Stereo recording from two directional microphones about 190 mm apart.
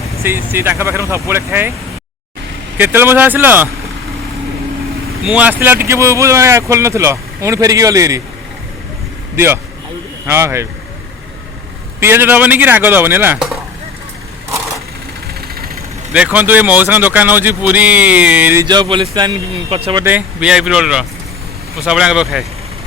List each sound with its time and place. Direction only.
0.2 s speech: 10° right (ahead or behind)
2.7 s speech: 10° right (ahead or behind)
5.2 s speech: 5° right (ahead or behind)
9.3 s speech: 10° right (ahead or behind)
11.9 s speech: 10° right (ahead or behind)
15.4 s vehicle: 55° right (ahead or behind)
16.1 s speech: 10° right (ahead or behind)
18.6 s speech: 25° right (ahead or behind)
20.1 s speech: 5° right (ahead or behind)